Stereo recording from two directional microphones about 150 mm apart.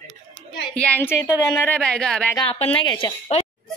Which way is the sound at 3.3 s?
45° left (ahead or behind).